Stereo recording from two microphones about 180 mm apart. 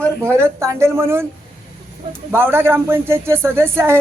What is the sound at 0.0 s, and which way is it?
A man's voice, 15° right (ahead or behind).